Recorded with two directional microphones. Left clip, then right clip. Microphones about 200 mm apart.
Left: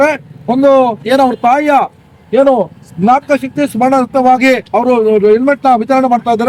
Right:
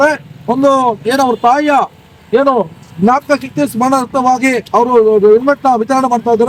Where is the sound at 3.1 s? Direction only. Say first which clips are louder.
Left 2 dB; 20° left (ahead or behind).